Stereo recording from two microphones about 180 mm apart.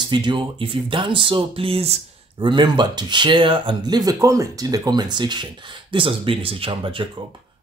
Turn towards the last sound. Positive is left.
turn(degrees=-30)  # may be behind; listen again after turning